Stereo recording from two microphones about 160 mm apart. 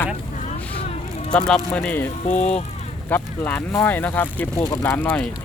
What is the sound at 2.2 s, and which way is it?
Speech, 45° left (ahead or behind).